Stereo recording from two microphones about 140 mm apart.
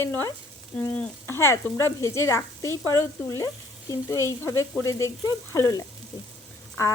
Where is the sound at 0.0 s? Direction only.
15° left (ahead or behind).